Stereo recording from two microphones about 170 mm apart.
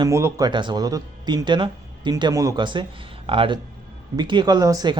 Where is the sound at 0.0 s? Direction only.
20° right (ahead or behind).